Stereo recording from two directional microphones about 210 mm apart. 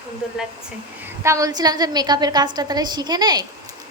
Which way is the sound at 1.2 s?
15° right (ahead or behind).